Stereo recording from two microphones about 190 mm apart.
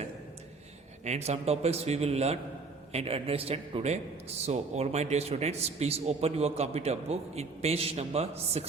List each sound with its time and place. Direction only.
1.0 s a man's voice: 35° right (ahead or behind)